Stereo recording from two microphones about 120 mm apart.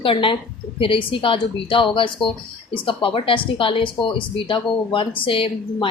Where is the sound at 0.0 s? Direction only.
45° left (ahead or behind).